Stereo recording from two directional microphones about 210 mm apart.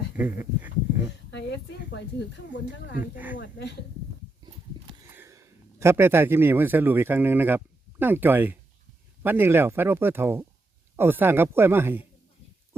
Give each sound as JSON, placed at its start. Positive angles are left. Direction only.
{"t": 0.2, "sound": "speech", "side_deg": -10}
{"t": 1.3, "sound": "speech", "side_deg": 55}
{"t": 3.0, "sound": "speech", "side_deg": -10}
{"t": 3.4, "sound": "speech", "side_deg": 55}
{"t": 5.1, "sound": "a man's voice", "side_deg": -10}